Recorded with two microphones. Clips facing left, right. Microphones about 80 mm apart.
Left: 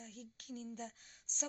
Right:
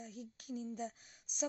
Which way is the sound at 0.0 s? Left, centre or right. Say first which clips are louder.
Right 4 dB; centre.